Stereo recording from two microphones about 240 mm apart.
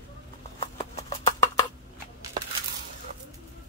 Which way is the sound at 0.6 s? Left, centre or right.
Left.